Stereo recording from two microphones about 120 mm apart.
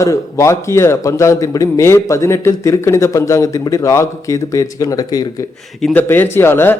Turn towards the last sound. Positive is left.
turn(degrees=20)  # may be behind; listen again after turning